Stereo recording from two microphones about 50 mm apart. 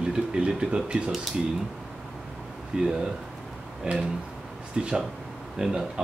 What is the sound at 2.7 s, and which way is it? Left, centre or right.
Speech, centre.